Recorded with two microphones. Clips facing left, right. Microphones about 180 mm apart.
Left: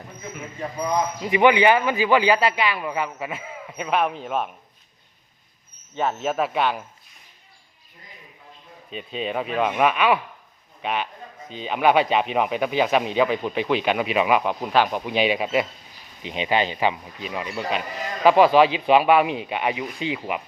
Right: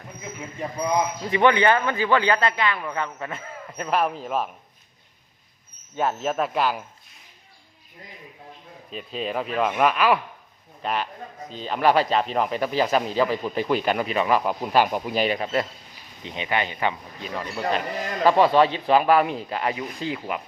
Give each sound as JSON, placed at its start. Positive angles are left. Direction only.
{"t": 1.2, "sound": "a man's voice", "side_deg": 10}
{"t": 6.0, "sound": "speech", "side_deg": 0}
{"t": 8.9, "sound": "speech", "side_deg": 0}
{"t": 16.2, "sound": "a man's voice", "side_deg": 20}